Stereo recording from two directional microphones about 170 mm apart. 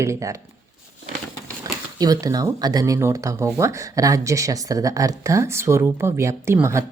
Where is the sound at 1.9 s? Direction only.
20° right (ahead or behind).